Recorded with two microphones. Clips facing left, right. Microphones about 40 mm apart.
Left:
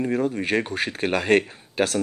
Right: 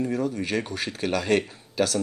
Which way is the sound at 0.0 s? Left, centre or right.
Left.